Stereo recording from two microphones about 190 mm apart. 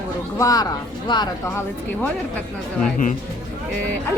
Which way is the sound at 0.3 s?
20° left (ahead or behind).